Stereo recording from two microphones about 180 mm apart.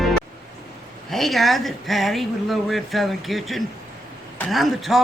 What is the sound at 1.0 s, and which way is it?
Speech, centre (ahead or behind).